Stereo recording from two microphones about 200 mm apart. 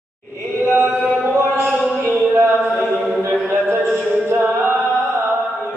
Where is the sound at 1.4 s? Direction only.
10° right (ahead or behind).